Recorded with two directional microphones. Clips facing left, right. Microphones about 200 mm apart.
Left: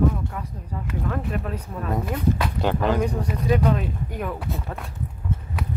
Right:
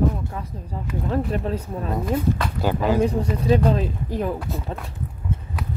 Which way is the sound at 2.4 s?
5° right (ahead or behind).